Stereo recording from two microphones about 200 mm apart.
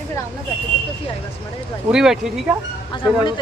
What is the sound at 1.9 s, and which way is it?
Speech, 5° right (ahead or behind).